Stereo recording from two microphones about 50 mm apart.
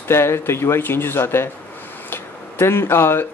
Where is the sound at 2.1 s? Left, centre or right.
Left.